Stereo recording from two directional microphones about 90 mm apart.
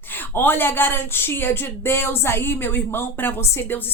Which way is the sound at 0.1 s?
25° left (ahead or behind).